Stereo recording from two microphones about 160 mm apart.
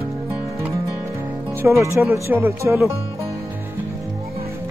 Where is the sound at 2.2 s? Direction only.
15° right (ahead or behind).